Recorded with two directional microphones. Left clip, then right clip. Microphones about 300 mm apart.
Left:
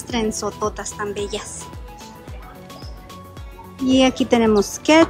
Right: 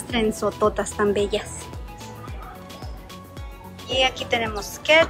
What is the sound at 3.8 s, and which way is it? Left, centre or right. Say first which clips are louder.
Speech: left 5 dB; left.